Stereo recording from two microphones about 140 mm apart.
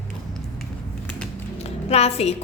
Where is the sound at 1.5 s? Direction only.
50° left (ahead or behind).